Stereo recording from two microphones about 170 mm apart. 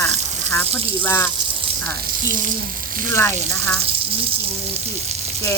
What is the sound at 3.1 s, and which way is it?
Speech, 15° left (ahead or behind).